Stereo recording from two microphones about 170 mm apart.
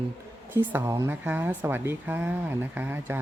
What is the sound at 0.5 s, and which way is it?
A woman's voice, 15° right (ahead or behind).